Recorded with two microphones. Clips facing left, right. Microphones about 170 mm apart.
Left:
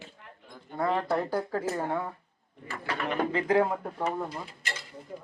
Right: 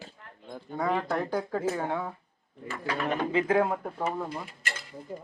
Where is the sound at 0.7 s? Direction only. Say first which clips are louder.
Left 1 dB; centre (ahead or behind).